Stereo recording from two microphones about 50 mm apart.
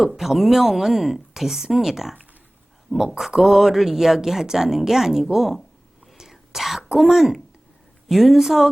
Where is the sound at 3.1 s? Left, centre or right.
Centre.